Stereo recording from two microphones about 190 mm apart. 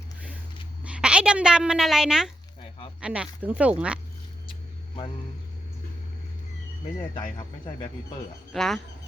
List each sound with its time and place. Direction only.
0.9 s a woman's voice: 5° right (ahead or behind)
7.1 s speech: 25° left (ahead or behind)
8.5 s speech: centre (ahead or behind)